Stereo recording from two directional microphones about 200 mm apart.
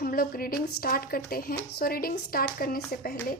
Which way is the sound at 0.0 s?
50° left (ahead or behind).